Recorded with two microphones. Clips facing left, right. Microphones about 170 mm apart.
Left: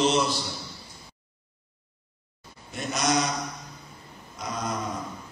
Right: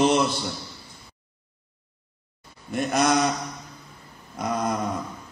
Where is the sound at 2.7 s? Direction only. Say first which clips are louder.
Right 5 dB; 55° right (ahead or behind).